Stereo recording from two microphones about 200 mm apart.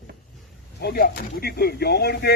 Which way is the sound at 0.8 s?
50° left (ahead or behind).